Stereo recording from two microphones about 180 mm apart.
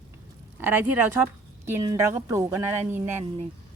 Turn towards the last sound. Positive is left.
turn(degrees=-15)  # may be behind; listen again after turning